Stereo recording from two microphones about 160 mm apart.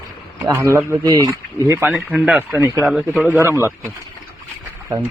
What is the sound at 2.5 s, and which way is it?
Speech, 15° right (ahead or behind).